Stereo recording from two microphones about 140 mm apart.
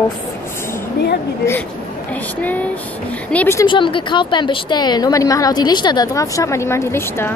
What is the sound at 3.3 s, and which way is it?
Speech, 10° left (ahead or behind).